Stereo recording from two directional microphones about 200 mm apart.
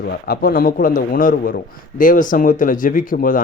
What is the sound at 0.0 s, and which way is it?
A man's voice, 50° left (ahead or behind).